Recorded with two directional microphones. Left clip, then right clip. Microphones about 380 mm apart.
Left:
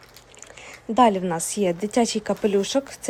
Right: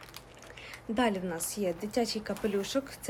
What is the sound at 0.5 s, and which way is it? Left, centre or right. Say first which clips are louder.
Speech: left 13 dB; centre.